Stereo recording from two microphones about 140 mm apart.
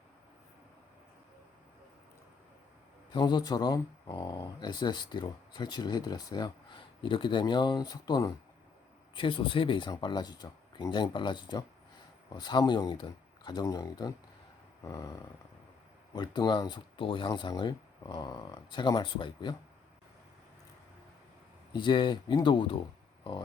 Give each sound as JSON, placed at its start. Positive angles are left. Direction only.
{"t": 3.1, "sound": "speech", "side_deg": 30}
{"t": 14.8, "sound": "a sound", "side_deg": 20}
{"t": 16.1, "sound": "speech", "side_deg": 30}
{"t": 21.7, "sound": "speech", "side_deg": 35}